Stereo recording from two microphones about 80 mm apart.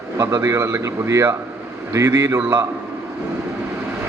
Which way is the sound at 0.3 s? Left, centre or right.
Right.